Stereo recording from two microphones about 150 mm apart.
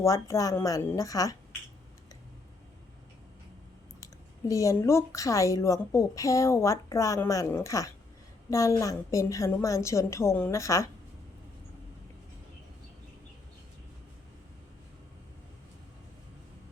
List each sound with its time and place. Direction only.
0.0 s a woman's voice: 20° left (ahead or behind)
4.0 s a woman's voice: 20° left (ahead or behind)